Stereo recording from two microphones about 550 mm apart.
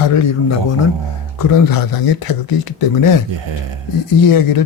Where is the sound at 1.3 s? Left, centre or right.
Left.